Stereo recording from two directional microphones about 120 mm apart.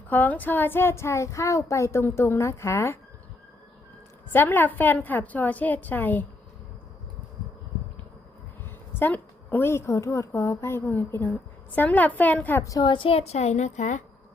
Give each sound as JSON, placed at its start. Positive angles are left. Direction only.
{"t": 0.1, "sound": "speech", "side_deg": 15}
{"t": 4.3, "sound": "a woman's voice", "side_deg": 15}
{"t": 9.0, "sound": "a woman's voice", "side_deg": 15}
{"t": 12.8, "sound": "a woman's voice", "side_deg": 45}